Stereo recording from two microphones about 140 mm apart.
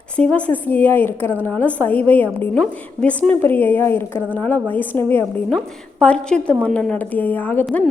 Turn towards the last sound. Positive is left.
turn(degrees=15)  # may be behind; listen again after turning